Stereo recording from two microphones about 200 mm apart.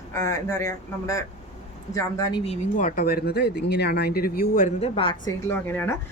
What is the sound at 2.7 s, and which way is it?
Speech, 40° left (ahead or behind).